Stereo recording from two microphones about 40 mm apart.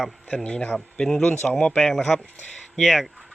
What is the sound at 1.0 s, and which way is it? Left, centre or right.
Speech, centre.